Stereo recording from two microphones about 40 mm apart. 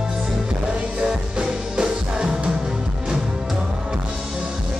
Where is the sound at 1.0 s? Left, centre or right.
Right.